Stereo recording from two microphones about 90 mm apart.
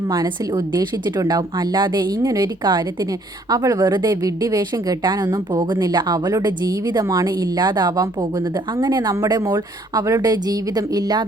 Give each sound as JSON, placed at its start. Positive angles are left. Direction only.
{"t": 0.1, "sound": "a woman's voice", "side_deg": -35}
{"t": 0.7, "sound": "a woman's voice", "side_deg": -50}
{"t": 9.3, "sound": "a woman's voice", "side_deg": -40}